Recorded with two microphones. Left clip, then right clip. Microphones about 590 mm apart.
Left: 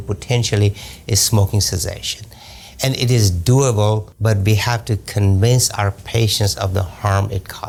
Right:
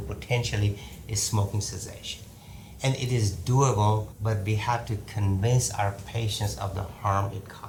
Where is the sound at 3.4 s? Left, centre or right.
Left.